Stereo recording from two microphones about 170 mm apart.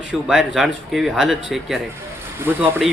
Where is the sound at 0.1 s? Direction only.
5° right (ahead or behind).